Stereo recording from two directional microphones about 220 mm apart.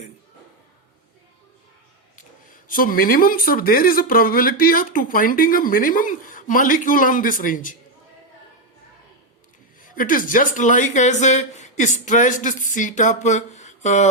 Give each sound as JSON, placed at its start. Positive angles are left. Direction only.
{"t": 2.6, "sound": "speech", "side_deg": 40}
{"t": 9.8, "sound": "speech", "side_deg": 40}